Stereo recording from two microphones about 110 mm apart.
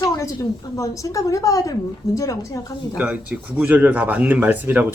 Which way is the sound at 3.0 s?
10° right (ahead or behind).